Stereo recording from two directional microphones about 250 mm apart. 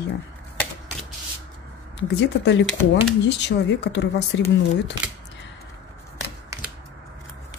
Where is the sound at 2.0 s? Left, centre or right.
Left.